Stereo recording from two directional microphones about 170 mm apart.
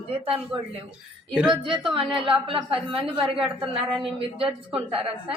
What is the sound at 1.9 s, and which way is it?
A woman's voice, 30° right (ahead or behind).